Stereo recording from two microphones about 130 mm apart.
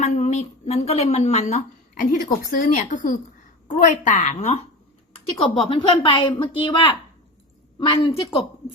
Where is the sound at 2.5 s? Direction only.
90° left.